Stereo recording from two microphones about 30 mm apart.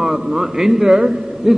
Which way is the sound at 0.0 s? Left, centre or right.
Centre.